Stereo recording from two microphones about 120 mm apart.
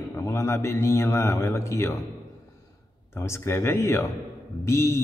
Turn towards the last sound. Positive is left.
turn(degrees=25)  # may be behind; listen again after turning